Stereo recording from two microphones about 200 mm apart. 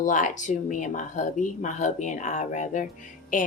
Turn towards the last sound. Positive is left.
turn(degrees=40)  # may be behind; listen again after turning